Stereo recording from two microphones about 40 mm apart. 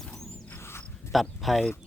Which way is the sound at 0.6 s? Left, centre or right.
Left.